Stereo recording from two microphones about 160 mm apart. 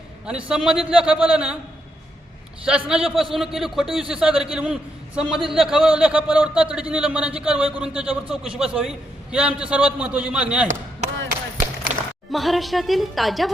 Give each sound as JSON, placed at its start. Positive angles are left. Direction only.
{"t": 0.3, "sound": "a man's voice", "side_deg": -5}
{"t": 2.6, "sound": "a man's voice", "side_deg": -5}
{"t": 11.9, "sound": "a sound", "side_deg": -45}
{"t": 12.3, "sound": "a man's voice", "side_deg": 0}